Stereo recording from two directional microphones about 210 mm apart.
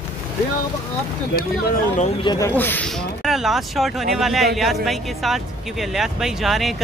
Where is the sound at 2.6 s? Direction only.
10° left (ahead or behind).